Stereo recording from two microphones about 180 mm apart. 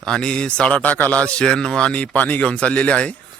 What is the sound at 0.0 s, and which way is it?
A man's voice, 5° left (ahead or behind).